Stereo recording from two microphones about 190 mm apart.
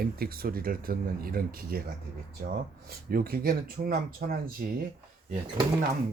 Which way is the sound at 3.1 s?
50° right (ahead or behind).